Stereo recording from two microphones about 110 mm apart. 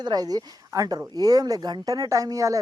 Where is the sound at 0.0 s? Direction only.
40° right (ahead or behind).